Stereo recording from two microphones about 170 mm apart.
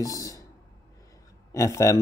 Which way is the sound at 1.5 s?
20° left (ahead or behind).